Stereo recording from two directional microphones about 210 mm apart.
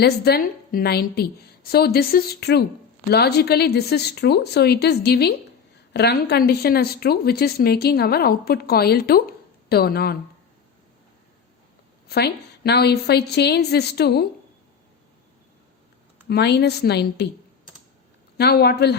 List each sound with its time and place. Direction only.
0.0 s speech: 50° left (ahead or behind)
12.0 s speech: 50° left (ahead or behind)
16.3 s speech: 50° left (ahead or behind)
18.3 s speech: 50° left (ahead or behind)